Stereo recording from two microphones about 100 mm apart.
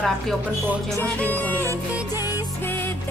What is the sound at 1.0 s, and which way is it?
Music, 15° left (ahead or behind).